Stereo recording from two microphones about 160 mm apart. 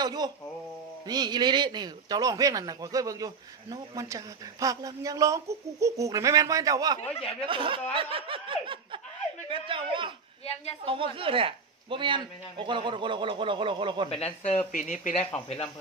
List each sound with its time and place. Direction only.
0.0 s a sound: 25° right (ahead or behind)
1.0 s speech: 25° right (ahead or behind)
10.4 s a woman's voice: 40° left (ahead or behind)
10.9 s speech: 35° right (ahead or behind)
14.1 s speech: 40° left (ahead or behind)